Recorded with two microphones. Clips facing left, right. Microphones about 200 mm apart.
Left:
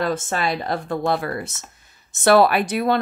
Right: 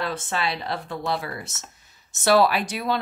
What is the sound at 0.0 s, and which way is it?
A woman's voice, 45° left (ahead or behind).